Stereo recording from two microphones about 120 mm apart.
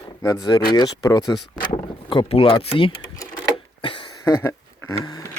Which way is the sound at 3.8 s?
40° left (ahead or behind).